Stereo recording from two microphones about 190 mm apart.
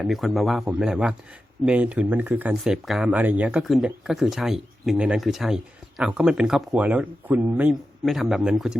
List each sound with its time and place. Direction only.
0.0 s speech: centre (ahead or behind)